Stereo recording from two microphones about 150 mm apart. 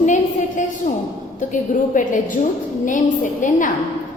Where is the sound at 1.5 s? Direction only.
60° left (ahead or behind).